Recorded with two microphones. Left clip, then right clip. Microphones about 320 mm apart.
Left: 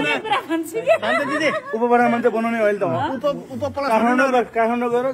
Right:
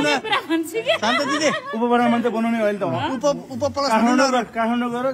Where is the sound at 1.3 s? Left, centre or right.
Right.